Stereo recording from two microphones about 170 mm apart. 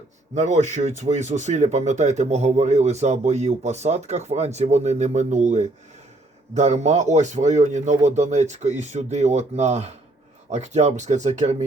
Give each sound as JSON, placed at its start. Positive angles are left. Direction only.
{"t": 0.3, "sound": "speech", "side_deg": -45}